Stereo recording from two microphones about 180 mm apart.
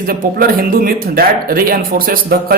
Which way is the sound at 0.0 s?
50° right (ahead or behind).